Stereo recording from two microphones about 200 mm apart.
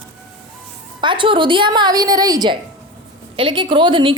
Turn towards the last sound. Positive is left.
turn(degrees=-25)  # may be behind; listen again after turning